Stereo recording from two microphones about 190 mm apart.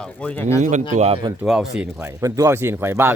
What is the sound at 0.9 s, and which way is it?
Speech, 35° right (ahead or behind).